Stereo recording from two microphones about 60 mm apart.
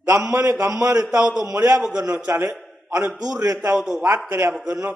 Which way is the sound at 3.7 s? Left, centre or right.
Centre.